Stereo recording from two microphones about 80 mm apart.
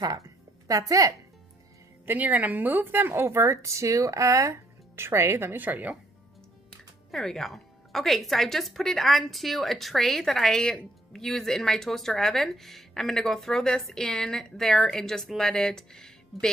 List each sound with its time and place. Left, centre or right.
0.7 s a woman's voice: right
2.0 s a woman's voice: centre
7.1 s a woman's voice: centre